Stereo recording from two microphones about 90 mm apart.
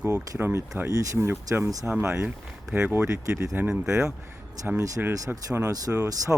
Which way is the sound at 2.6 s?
10° right (ahead or behind).